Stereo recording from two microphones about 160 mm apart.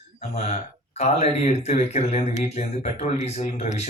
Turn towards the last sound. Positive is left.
turn(degrees=45)  # may be behind; listen again after turning